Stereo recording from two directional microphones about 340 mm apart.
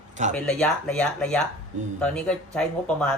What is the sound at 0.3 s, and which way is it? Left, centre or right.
Speech, centre.